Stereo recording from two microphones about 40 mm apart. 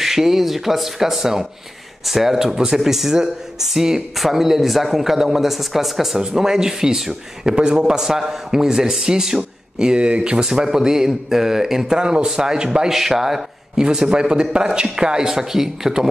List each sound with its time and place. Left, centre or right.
0.0 s speech: centre
8.0 s speech: centre; by 10.4 s right
10.4 s speech: centre
14.0 s speech: right